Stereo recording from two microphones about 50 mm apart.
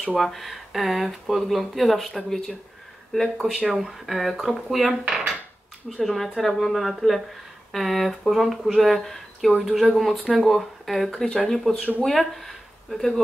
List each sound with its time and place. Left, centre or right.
0.1 s speech: centre
3.3 s speech: centre
5.0 s dishes: centre
5.9 s speech: centre